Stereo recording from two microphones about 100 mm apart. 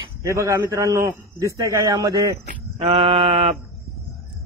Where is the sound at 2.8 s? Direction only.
70° right (ahead or behind).